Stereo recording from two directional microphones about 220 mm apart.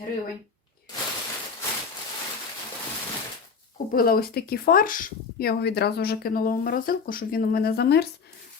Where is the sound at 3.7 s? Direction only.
40° left (ahead or behind).